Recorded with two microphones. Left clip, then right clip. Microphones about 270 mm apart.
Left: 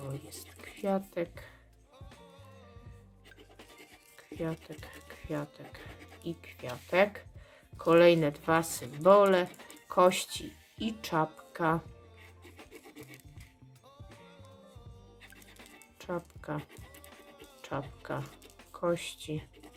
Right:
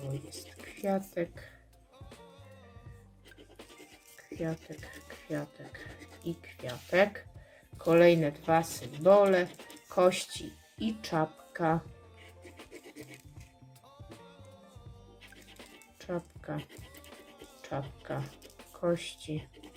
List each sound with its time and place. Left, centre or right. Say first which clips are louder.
0.1 s a sound: right 2 dB; centre
4.5 s a sound: right 1 dB; centre
5.3 s speech: even; centre
5.6 s music: right 1 dB; centre
6.9 s speech: even; centre
12.5 s music: right 1 dB; centre
15.2 s music: right 1 dB; centre
16.0 s music: even; centre
16.9 s music: right 1 dB; centre
17.6 s a sound: even; centre
18.8 s speech: even; centre